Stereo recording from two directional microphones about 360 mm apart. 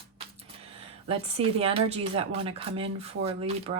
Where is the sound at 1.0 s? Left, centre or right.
Centre.